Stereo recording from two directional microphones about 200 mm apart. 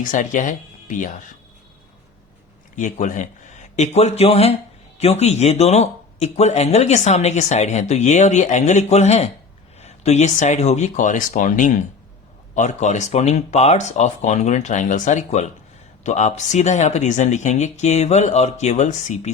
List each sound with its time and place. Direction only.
0.0 s speech: 40° left (ahead or behind)
2.7 s speech: 40° left (ahead or behind)